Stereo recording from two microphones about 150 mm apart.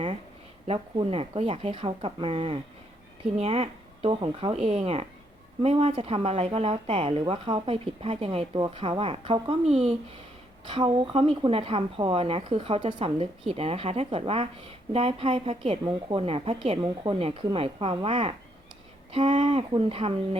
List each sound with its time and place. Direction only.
0.7 s a woman's voice: 40° right (ahead or behind)